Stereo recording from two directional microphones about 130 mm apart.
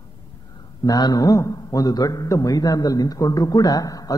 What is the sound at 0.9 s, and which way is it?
A man's voice, 30° left (ahead or behind).